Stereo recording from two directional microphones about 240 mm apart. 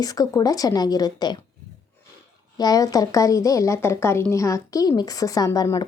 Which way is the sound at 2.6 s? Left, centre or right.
Centre.